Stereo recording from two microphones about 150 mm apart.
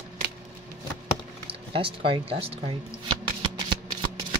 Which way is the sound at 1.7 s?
35° right (ahead or behind).